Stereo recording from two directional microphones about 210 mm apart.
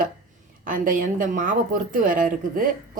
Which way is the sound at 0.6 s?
40° right (ahead or behind).